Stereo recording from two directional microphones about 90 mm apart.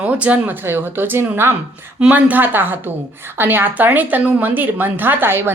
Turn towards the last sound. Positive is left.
turn(degrees=-25)  # may be behind; listen again after turning